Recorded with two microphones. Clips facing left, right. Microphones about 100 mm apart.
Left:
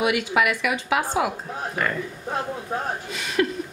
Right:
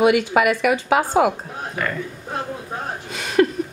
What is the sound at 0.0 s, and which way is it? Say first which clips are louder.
A woman's voice: right 6 dB; 40° right (ahead or behind).